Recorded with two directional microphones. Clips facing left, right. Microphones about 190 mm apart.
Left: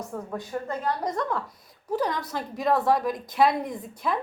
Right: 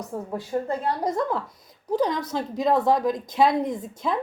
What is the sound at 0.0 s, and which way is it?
A woman's voice, 20° right (ahead or behind).